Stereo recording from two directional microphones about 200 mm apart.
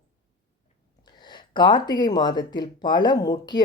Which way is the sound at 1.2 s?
20° left (ahead or behind).